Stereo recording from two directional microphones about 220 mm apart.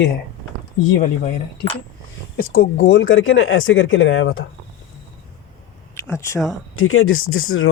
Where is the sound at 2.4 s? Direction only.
45° left (ahead or behind); by 4.4 s 60° left (ahead or behind).